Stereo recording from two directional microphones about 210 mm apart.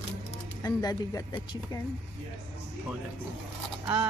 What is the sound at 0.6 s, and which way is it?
Speech, 15° left (ahead or behind).